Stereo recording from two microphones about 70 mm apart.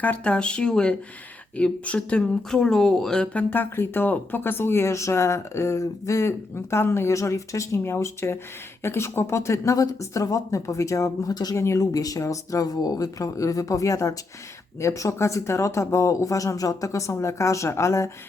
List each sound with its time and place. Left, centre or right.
0.0 s speech: centre
3.3 s speech: left
9.7 s speech: left